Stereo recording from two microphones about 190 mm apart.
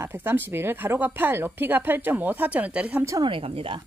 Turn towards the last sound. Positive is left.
turn(degrees=-30)  # may be behind; listen again after turning